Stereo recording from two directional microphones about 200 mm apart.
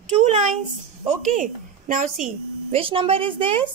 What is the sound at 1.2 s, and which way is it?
Speech, 40° right (ahead or behind).